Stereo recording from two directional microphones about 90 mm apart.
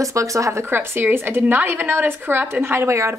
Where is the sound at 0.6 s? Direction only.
25° right (ahead or behind).